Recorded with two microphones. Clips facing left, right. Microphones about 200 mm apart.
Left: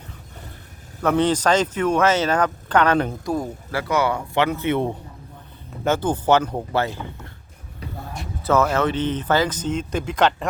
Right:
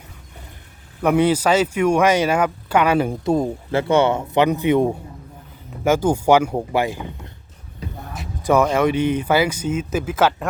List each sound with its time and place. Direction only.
1.0 s speech: 10° right (ahead or behind)
3.2 s speech: 25° right (ahead or behind)
8.7 s speech: 10° right (ahead or behind)